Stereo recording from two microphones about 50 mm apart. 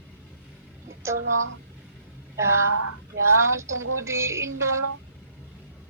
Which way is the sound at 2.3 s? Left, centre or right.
Right.